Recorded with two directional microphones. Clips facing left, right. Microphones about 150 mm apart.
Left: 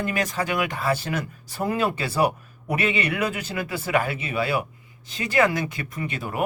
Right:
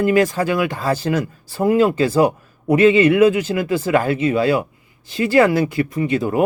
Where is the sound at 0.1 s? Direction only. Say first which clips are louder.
Right 10 dB; 30° right (ahead or behind).